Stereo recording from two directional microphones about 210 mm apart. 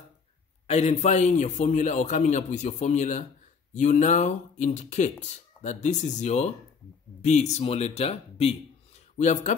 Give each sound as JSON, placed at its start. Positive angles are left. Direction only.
{"t": 0.7, "sound": "speech", "side_deg": 30}